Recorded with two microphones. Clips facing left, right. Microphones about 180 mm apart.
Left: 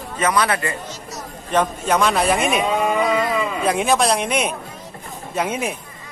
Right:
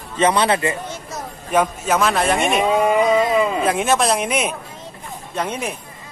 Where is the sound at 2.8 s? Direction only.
20° right (ahead or behind).